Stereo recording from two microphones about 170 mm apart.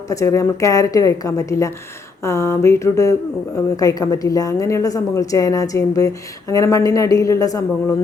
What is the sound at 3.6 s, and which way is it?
A woman's voice, 20° left (ahead or behind).